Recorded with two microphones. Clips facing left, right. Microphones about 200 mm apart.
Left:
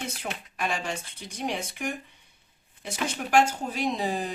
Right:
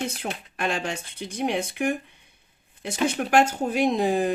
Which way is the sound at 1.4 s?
60° right (ahead or behind).